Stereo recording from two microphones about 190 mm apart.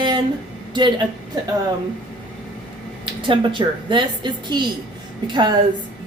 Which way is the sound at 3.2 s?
25° right (ahead or behind).